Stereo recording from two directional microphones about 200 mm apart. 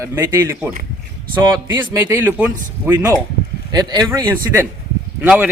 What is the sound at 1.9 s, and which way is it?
Speech, 10° right (ahead or behind).